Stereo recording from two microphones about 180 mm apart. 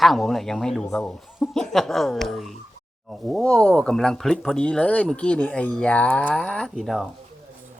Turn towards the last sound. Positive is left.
turn(degrees=0)  # may be behind; listen again after turning